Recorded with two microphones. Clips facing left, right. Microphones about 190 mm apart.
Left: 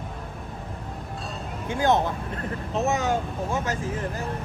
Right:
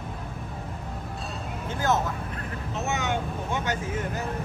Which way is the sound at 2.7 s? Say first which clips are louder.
Left 5 dB; 35° left (ahead or behind).